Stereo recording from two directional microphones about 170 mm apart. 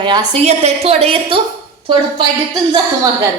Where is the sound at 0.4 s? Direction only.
40° right (ahead or behind).